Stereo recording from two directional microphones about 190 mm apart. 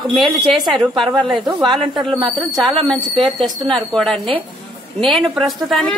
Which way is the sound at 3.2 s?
25° right (ahead or behind).